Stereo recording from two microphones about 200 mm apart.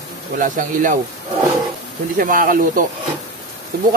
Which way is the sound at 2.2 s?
45° right (ahead or behind).